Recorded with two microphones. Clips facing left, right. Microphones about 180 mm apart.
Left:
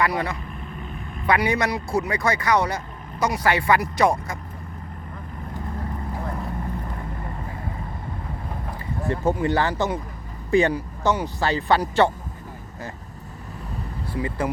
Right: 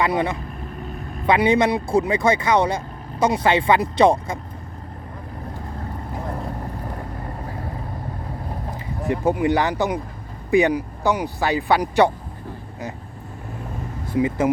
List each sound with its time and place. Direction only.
0.0 s speech: 25° right (ahead or behind)
0.8 s vehicle: 40° right (ahead or behind)
1.3 s speech: 25° right (ahead or behind)
9.0 s speech: 15° right (ahead or behind)
14.2 s speech: 20° right (ahead or behind)